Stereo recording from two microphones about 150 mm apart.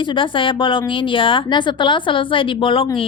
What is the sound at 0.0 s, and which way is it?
A woman's voice, 35° left (ahead or behind).